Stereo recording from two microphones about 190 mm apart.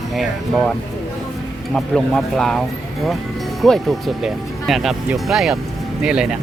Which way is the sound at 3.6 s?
Centre (ahead or behind).